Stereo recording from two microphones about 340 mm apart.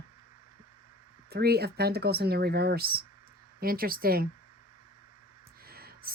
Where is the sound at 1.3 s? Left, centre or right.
Right.